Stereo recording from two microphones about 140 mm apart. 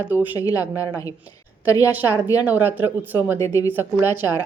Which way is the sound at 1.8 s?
10° right (ahead or behind).